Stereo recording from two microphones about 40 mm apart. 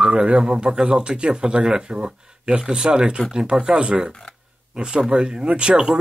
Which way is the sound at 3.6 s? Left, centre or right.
Right.